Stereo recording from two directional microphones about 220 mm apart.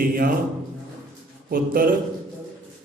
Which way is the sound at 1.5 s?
40° right (ahead or behind).